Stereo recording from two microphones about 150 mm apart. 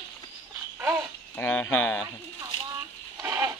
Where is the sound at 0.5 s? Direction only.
15° right (ahead or behind).